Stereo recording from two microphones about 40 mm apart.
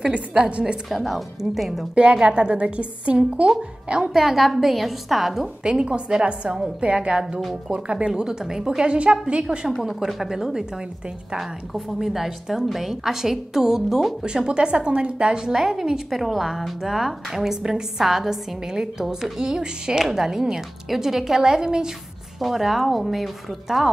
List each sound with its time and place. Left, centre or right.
0.1 s a woman's voice: right
0.8 s a woman's voice: centre
2.0 s a woman's voice: right
4.1 s a woman's voice: centre
5.6 s a woman's voice: right
8.2 s a woman's voice: centre
9.7 s a woman's voice: centre
10.2 s a woman's voice: centre
14.2 s a woman's voice: right
16.1 s a woman's voice: centre
22.4 s a woman's voice: centre